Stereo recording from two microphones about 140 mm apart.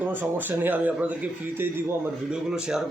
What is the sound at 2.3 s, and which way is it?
Speech, 5° right (ahead or behind).